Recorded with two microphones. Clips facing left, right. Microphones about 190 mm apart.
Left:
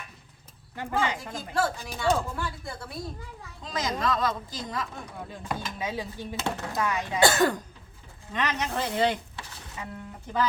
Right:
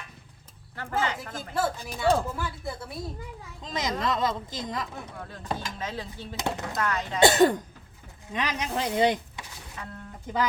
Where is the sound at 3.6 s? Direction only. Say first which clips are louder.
Even; 20° right (ahead or behind).